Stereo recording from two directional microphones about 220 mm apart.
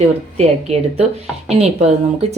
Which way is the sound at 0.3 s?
30° right (ahead or behind).